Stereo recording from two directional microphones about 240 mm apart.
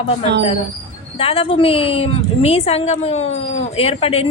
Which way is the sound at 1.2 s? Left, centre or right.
Left.